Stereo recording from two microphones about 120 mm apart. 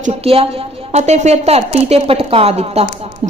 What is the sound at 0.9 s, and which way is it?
A woman's voice, 65° right (ahead or behind).